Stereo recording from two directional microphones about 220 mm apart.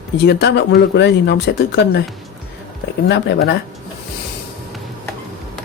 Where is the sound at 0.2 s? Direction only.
50° left (ahead or behind).